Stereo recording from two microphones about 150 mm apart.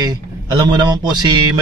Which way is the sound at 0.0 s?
30° right (ahead or behind).